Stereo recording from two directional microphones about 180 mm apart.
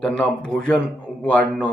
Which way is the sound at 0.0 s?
5° left (ahead or behind).